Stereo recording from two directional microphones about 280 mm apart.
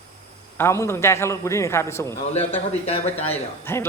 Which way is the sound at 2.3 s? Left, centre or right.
Left.